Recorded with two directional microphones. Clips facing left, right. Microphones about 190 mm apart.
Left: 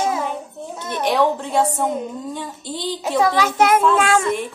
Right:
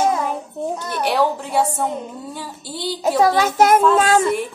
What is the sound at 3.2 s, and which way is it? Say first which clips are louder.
Speech: right 1 dB; 45° right (ahead or behind).